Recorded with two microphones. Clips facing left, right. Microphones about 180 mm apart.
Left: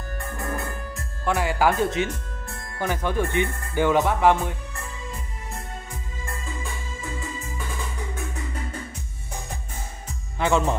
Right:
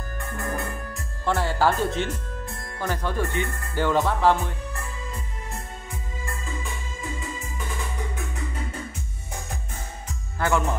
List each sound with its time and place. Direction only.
1.2 s music: 10° left (ahead or behind)
1.9 s music: centre (ahead or behind)
2.8 s music: 15° left (ahead or behind)
10.4 s speech: 25° left (ahead or behind)